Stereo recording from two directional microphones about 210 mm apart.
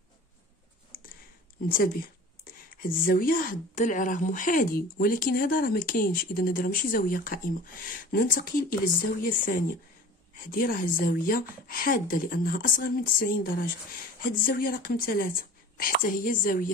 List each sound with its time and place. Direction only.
1.7 s a woman's voice: 45° left (ahead or behind)